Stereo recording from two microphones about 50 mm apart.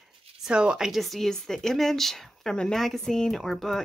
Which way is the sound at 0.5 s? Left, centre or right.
Centre.